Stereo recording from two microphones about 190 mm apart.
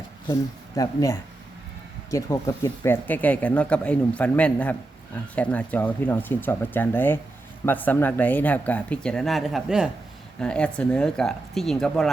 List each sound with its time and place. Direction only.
0.8 s speech: 15° left (ahead or behind); by 12.1 s centre (ahead or behind)